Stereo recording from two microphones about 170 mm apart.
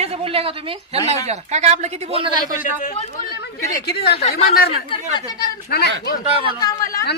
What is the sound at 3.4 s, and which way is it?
Speech, 70° left (ahead or behind).